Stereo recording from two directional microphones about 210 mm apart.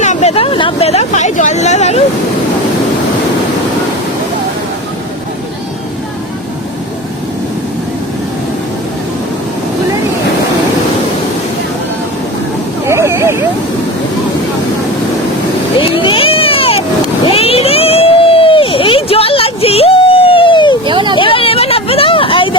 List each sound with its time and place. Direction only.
0.0 s speech: 35° left (ahead or behind)
12.9 s a sound: 15° right (ahead or behind)
15.8 s vehicle: 25° left (ahead or behind)
17.2 s a sound: 30° left (ahead or behind)
20.8 s vehicle: 20° right (ahead or behind)
21.2 s vehicle: 25° left (ahead or behind)